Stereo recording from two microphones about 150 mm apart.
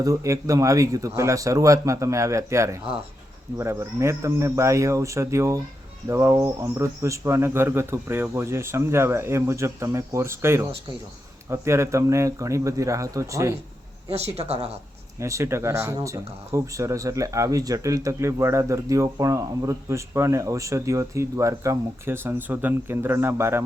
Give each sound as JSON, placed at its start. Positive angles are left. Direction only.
{"t": 0.0, "sound": "speech", "side_deg": -20}
{"t": 14.1, "sound": "speech", "side_deg": -45}
{"t": 15.2, "sound": "speech", "side_deg": -20}